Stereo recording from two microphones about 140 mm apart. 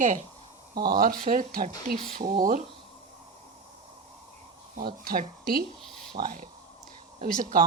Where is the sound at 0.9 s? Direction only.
90° right; by 2.6 s 75° right (ahead or behind).